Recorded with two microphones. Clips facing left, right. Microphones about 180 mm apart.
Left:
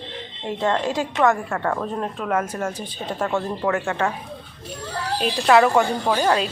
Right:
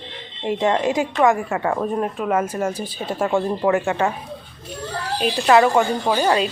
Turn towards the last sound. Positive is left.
turn(degrees=-5)  # may be behind; listen again after turning